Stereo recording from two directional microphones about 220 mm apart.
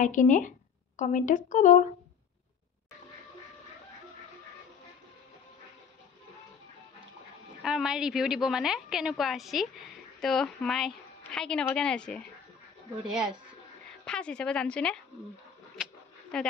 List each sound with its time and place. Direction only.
0.0 s speech: 35° left (ahead or behind)
7.6 s a woman's voice: 5° right (ahead or behind)
14.0 s a woman's voice: 5° left (ahead or behind)
15.8 s a sound: 5° left (ahead or behind)